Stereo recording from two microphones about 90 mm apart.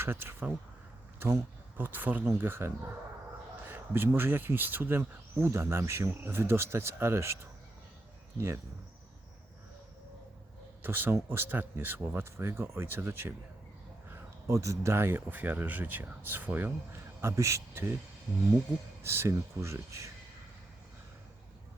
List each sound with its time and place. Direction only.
0.0 s speech: 25° right (ahead or behind)
10.8 s speech: 25° right (ahead or behind)
19.0 s speech: 30° right (ahead or behind)